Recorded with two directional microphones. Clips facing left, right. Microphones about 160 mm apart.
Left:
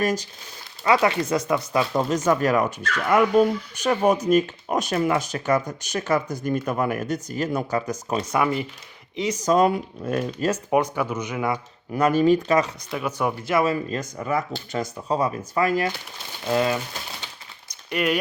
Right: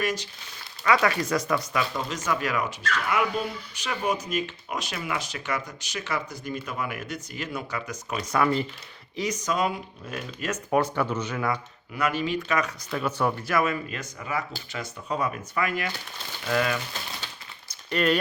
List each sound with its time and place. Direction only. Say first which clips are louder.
0.0 s speech: left 5 dB; 40° left (ahead or behind)
0.9 s speech: left 3 dB; 25° left (ahead or behind)
8.3 s speech: even; 15° left (ahead or behind)
9.1 s speech: left 7 dB; 30° left (ahead or behind)
10.7 s speech: right 2 dB; 15° left (ahead or behind)
11.9 s speech: left 9 dB; 40° left (ahead or behind)
12.9 s speech: right 2 dB; 10° left (ahead or behind)
13.5 s speech: left 4 dB; 30° left (ahead or behind)
16.4 s speech: left 4 dB; 25° left (ahead or behind)
17.7 s a sound: even; 10° left (ahead or behind)